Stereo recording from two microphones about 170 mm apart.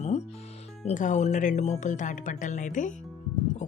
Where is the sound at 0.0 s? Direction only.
40° left (ahead or behind).